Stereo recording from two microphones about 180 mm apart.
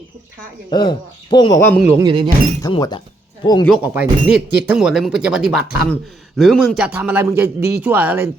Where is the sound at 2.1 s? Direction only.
25° right (ahead or behind).